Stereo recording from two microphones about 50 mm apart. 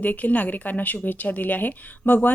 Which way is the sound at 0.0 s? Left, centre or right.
Left.